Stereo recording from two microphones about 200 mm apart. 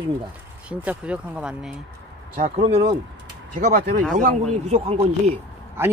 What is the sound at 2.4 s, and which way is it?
Speech, 35° right (ahead or behind).